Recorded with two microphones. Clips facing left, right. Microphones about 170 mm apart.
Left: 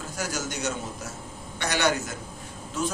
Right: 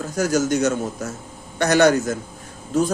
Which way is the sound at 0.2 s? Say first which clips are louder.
Right 13 dB; 45° right (ahead or behind).